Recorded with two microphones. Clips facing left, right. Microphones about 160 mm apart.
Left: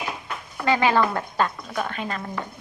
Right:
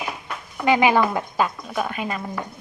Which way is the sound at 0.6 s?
15° right (ahead or behind).